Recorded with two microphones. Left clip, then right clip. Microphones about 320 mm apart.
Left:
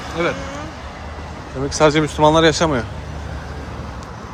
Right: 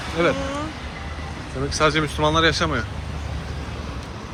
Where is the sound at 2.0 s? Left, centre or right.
Centre.